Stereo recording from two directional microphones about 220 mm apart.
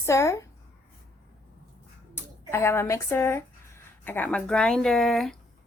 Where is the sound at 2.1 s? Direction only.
10° left (ahead or behind).